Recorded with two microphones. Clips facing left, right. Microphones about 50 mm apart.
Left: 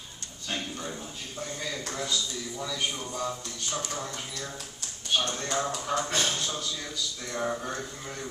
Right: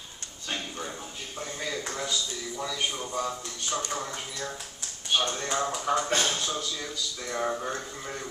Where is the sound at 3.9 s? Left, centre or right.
Centre.